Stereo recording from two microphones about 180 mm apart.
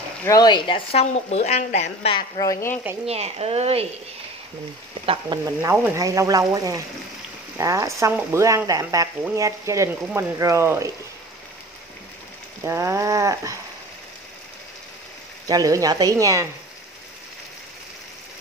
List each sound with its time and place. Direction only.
0.2 s a woman's voice: 20° left (ahead or behind); by 2.1 s 40° left (ahead or behind)
2.1 s speech: 25° left (ahead or behind)
3.1 s speech: 35° right (ahead or behind)
5.0 s speech: 30° right (ahead or behind)
5.4 s speech: 15° right (ahead or behind)
12.6 s speech: 15° right (ahead or behind)
15.4 s speech: 20° right (ahead or behind)